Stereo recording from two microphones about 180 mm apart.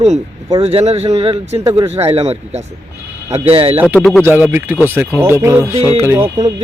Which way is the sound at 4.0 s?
5° left (ahead or behind).